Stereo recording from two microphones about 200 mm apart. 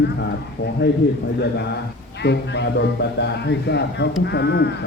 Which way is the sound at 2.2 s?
55° left (ahead or behind).